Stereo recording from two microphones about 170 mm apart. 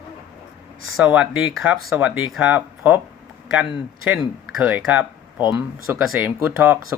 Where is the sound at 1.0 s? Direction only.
5° right (ahead or behind).